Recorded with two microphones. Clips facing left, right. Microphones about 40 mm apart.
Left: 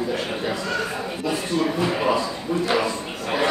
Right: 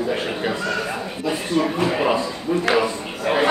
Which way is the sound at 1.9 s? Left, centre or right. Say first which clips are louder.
Right 2 dB; centre.